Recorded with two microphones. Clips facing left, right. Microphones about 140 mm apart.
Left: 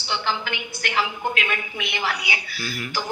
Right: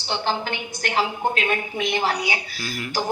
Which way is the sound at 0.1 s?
45° right (ahead or behind).